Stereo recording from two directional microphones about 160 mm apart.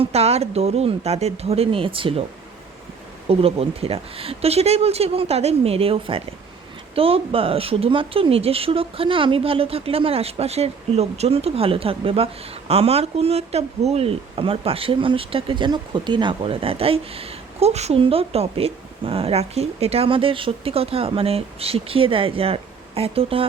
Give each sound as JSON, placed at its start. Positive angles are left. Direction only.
{"t": 0.0, "sound": "speech", "side_deg": -40}
{"t": 3.2, "sound": "speech", "side_deg": -40}